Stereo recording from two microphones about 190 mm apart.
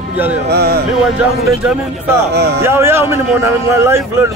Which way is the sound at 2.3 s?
60° right (ahead or behind).